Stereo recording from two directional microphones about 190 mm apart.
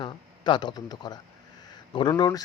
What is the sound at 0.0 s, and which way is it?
A man's voice, 25° left (ahead or behind).